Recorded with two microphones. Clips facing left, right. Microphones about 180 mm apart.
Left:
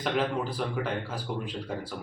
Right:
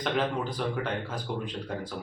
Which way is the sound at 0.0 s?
5° left (ahead or behind).